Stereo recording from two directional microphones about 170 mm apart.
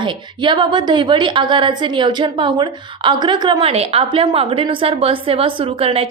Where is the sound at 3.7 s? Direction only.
35° right (ahead or behind).